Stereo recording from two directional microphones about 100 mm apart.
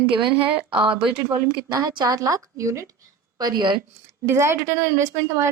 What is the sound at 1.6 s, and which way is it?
Speech, 40° right (ahead or behind).